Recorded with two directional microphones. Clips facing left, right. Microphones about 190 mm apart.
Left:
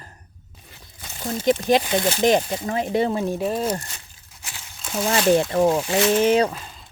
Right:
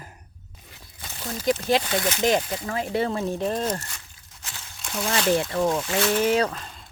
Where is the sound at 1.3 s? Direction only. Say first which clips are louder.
Left 4 dB; 25° left (ahead or behind).